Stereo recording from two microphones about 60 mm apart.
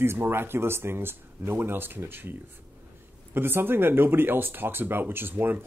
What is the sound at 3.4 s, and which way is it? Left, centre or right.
A man's voice, right.